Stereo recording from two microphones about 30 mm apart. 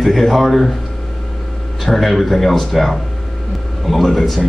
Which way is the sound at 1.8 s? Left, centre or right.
Centre.